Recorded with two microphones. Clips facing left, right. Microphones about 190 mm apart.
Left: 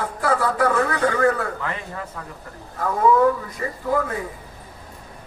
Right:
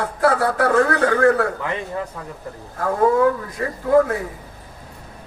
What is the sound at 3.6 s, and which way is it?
Speech, 65° right (ahead or behind).